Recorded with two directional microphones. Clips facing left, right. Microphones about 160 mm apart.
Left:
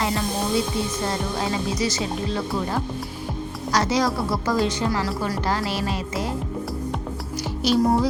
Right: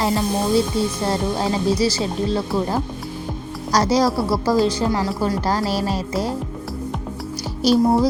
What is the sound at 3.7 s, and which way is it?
A woman's voice, 35° right (ahead or behind).